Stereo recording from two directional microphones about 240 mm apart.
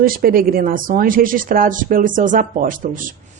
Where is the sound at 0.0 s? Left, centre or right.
Right.